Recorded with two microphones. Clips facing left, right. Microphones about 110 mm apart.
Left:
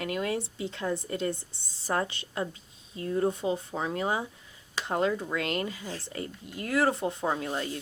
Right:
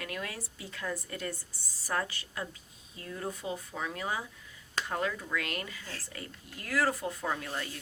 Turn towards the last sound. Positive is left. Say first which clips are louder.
# left 5 dB
turn(degrees=25)  # may be behind; listen again after turning